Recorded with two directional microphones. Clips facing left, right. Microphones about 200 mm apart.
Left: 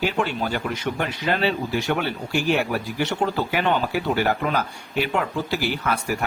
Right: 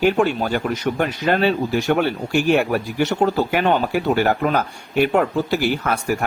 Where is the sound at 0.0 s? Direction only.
45° right (ahead or behind).